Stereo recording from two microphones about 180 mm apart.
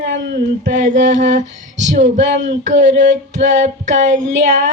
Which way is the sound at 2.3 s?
45° right (ahead or behind).